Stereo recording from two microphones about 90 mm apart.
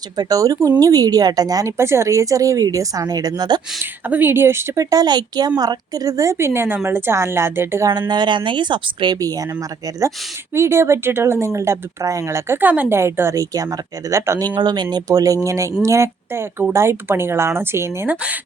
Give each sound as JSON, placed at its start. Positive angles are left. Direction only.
{"t": 0.2, "sound": "a woman's voice", "side_deg": -40}
{"t": 4.1, "sound": "speech", "side_deg": -25}
{"t": 7.9, "sound": "speech", "side_deg": -50}
{"t": 10.5, "sound": "speech", "side_deg": -30}
{"t": 13.0, "sound": "speech", "side_deg": -30}
{"t": 13.4, "sound": "speech", "side_deg": -40}
{"t": 14.5, "sound": "a woman's voice", "side_deg": -55}